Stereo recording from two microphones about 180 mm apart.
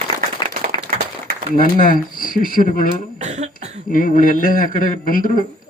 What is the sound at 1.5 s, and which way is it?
A man's voice, 50° left (ahead or behind).